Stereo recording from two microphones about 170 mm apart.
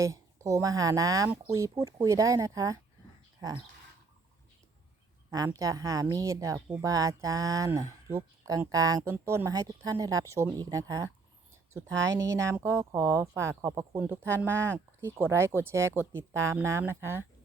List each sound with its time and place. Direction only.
0.0 s speech: 20° right (ahead or behind)
5.3 s speech: 20° right (ahead or behind)